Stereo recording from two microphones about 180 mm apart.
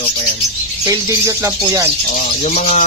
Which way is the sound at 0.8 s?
15° right (ahead or behind).